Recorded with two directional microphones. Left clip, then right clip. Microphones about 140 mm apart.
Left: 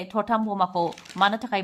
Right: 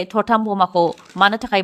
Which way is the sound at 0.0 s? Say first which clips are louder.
Right 7 dB; 50° right (ahead or behind).